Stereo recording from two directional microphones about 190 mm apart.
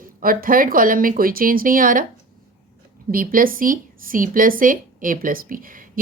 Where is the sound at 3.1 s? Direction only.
50° right (ahead or behind).